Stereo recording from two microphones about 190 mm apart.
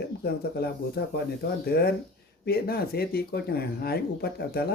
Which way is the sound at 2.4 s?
55° left (ahead or behind).